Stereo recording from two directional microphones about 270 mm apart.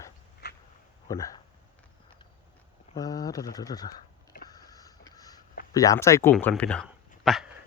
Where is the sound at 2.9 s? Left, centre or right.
Centre.